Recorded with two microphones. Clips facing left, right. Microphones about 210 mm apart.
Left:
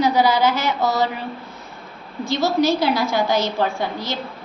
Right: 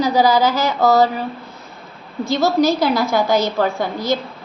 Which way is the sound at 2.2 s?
40° right (ahead or behind).